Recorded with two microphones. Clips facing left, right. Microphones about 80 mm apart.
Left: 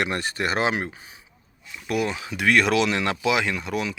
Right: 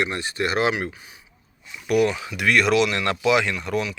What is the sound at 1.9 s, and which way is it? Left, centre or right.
Speech, left.